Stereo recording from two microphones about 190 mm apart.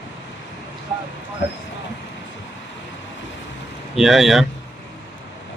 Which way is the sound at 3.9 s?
Centre (ahead or behind).